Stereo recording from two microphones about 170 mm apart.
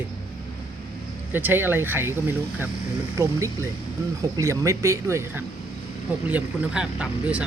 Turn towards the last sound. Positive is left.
turn(degrees=-5)  # may be behind; listen again after turning